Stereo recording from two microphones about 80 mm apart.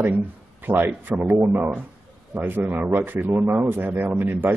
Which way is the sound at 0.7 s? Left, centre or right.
Right.